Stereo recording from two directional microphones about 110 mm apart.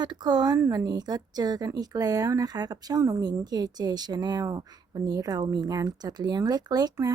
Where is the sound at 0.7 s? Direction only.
35° right (ahead or behind).